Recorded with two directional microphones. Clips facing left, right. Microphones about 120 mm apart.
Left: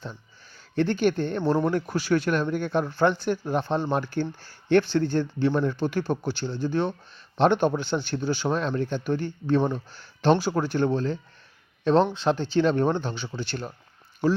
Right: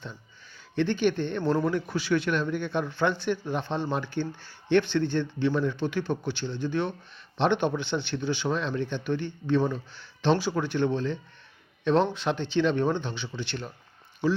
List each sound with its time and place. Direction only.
0.8 s speech: 40° left (ahead or behind)